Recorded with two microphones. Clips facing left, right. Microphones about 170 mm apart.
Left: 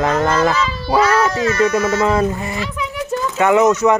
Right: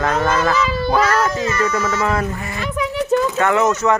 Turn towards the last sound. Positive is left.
turn(degrees=15)  # may be behind; listen again after turning